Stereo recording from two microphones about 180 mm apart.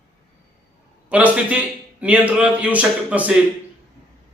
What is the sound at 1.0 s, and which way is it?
A man's voice, 10° right (ahead or behind).